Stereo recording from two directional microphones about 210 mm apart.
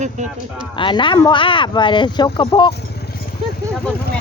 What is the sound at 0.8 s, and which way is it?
Speech, 25° left (ahead or behind).